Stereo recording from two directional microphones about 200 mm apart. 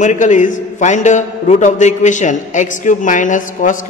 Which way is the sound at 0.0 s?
40° left (ahead or behind).